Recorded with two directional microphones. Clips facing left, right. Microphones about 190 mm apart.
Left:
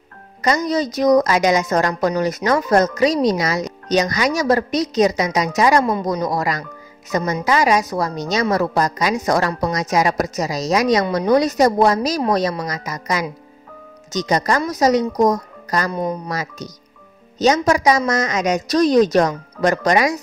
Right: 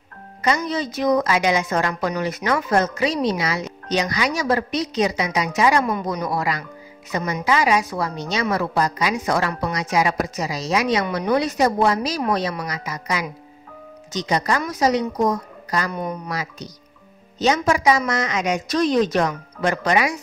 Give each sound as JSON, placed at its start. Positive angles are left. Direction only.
{"t": 0.4, "sound": "a woman's voice", "side_deg": 40}